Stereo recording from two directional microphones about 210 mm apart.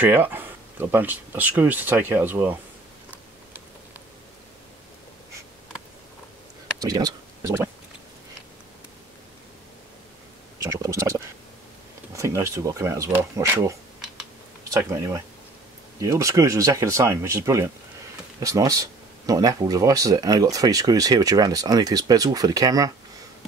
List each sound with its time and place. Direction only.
0.0 s speech: 10° right (ahead or behind)
6.8 s speech: 20° right (ahead or behind)
10.6 s speech: 15° right (ahead or behind)
14.8 s speech: 15° right (ahead or behind)